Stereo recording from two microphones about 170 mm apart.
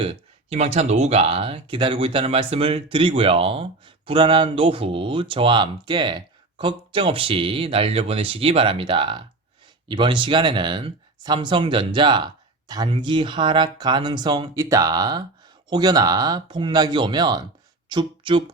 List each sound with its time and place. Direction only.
0.0 s speech: 35° right (ahead or behind)